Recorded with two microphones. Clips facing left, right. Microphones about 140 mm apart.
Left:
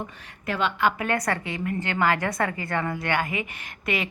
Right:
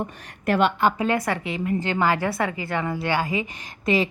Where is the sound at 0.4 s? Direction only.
60° right (ahead or behind).